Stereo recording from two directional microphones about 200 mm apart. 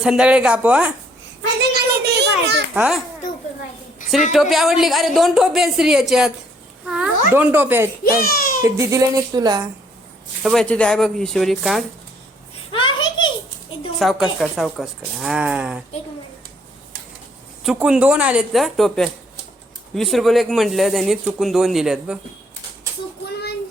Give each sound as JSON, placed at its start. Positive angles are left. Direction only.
{"t": 0.0, "sound": "speech", "side_deg": -5}
{"t": 1.7, "sound": "children playing", "side_deg": -55}
{"t": 2.7, "sound": "speech", "side_deg": -5}
{"t": 4.3, "sound": "speech", "side_deg": 0}
{"t": 8.0, "sound": "a child's voice", "side_deg": 45}
{"t": 8.6, "sound": "a woman's voice", "side_deg": -15}
{"t": 10.4, "sound": "speech", "side_deg": 5}
{"t": 12.7, "sound": "a sound", "side_deg": 25}
{"t": 14.0, "sound": "speech", "side_deg": 0}
{"t": 17.6, "sound": "speech", "side_deg": -5}